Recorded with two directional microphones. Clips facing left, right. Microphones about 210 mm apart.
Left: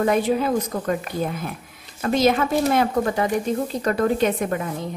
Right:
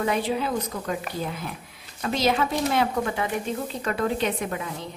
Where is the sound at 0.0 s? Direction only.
50° left (ahead or behind).